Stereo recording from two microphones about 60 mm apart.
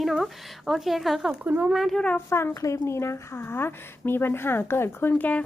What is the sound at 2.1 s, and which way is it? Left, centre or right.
Speech, left.